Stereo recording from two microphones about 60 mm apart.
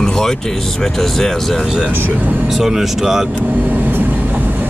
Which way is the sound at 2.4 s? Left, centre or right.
Centre.